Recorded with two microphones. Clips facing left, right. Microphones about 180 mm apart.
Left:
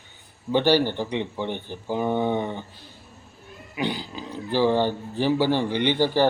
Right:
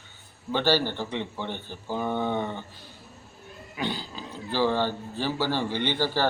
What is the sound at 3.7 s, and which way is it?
Speech, 15° left (ahead or behind).